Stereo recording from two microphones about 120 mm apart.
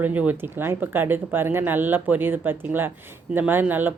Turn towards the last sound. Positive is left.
turn(degrees=-15)  # may be behind; listen again after turning